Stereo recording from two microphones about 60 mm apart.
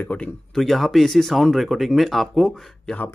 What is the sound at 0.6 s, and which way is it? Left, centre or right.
Speech, centre.